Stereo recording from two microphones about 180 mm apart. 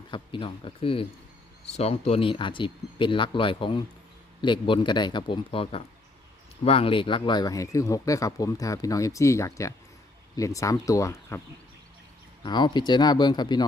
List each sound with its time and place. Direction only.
0.1 s speech: 30° left (ahead or behind)
12.4 s speech: 25° left (ahead or behind)